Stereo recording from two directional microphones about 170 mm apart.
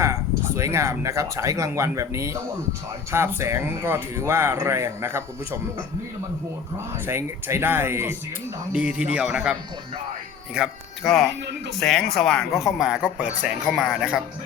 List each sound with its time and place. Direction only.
0.0 s speech: 15° right (ahead or behind)
7.0 s speech: 15° right (ahead or behind)